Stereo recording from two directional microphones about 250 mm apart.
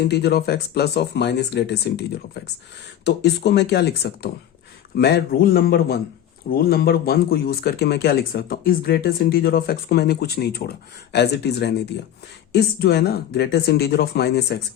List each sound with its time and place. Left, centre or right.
0.1 s speech: left